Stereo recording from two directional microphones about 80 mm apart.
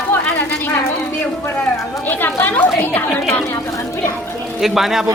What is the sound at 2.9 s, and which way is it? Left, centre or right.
Speech, left.